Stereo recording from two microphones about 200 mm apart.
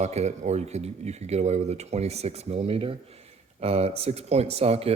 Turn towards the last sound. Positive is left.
turn(degrees=-30)  # may be behind; listen again after turning